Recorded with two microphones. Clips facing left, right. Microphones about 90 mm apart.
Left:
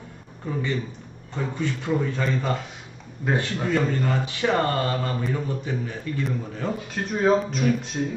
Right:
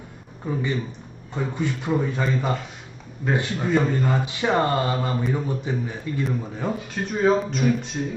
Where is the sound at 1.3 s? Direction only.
15° right (ahead or behind).